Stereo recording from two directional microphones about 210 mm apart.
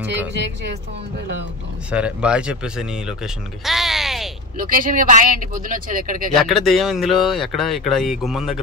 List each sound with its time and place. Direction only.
1.9 s speech: 5° right (ahead or behind)
4.6 s speech: 40° right (ahead or behind)
6.3 s speech: centre (ahead or behind)